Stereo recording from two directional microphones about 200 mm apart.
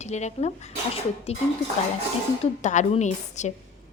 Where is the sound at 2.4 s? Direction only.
35° left (ahead or behind).